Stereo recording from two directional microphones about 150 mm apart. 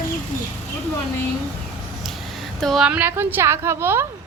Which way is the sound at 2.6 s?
Centre (ahead or behind).